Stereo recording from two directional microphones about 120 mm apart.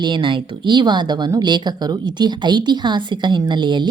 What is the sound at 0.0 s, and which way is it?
A woman's voice, 40° right (ahead or behind).